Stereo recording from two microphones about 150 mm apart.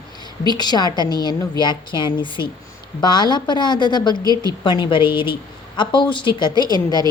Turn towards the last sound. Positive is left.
turn(degrees=30)  # may be behind; listen again after turning